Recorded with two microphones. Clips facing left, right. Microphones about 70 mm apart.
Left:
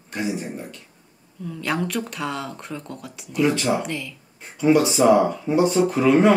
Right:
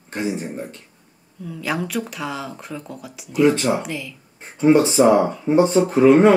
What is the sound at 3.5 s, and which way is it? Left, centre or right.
Speech, right.